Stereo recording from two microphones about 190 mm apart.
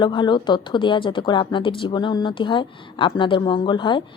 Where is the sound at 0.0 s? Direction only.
25° left (ahead or behind).